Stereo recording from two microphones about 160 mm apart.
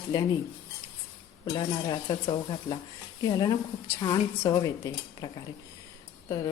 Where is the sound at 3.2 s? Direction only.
25° left (ahead or behind).